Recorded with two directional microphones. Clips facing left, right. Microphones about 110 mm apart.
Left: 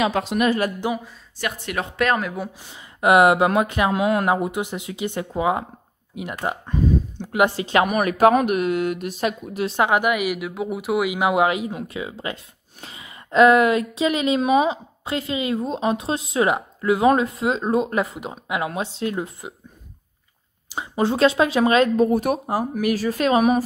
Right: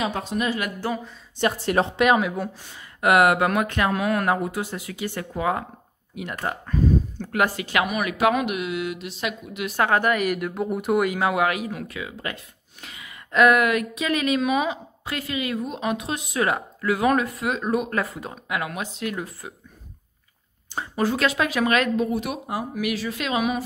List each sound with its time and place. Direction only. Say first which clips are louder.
0.0 s speech: left 5 dB; 85° left
0.7 s speech: left 3 dB; 15° left (ahead or behind)
1.4 s a woman's voice: right 5 dB; 30° right (ahead or behind)
2.1 s speech: right 2 dB; centre (ahead or behind)
2.7 s a woman's voice: left 3 dB; 20° left (ahead or behind)
7.8 s speech: left 5 dB; 45° left (ahead or behind)
9.7 s speech: left 1 dB; 20° left (ahead or behind)
11.1 s a woman's voice: left 3 dB; 20° left (ahead or behind)
20.7 s a sound: left 1 dB; 15° left (ahead or behind)
21.0 s speech: left 5 dB; 30° left (ahead or behind)